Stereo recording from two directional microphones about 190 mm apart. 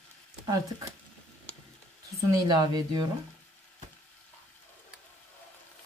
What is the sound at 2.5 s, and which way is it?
Speech, 20° right (ahead or behind).